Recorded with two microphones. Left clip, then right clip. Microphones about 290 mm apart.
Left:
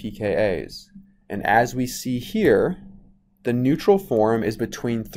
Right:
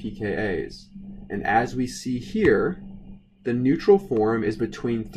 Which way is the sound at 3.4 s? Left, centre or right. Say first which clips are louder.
Left 2 dB; left.